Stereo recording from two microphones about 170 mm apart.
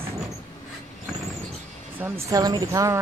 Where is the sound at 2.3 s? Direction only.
20° right (ahead or behind).